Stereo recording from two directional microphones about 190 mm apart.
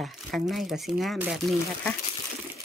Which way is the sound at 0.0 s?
Centre (ahead or behind).